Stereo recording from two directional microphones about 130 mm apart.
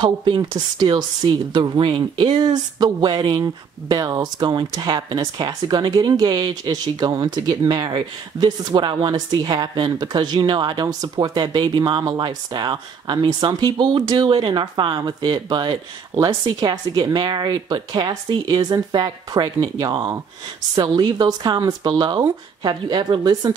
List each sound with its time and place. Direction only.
0.0 s speech: 35° right (ahead or behind)